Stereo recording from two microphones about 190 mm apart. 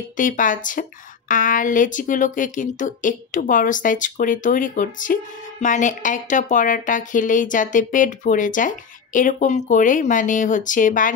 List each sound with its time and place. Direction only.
0.2 s a woman's voice: 45° left (ahead or behind)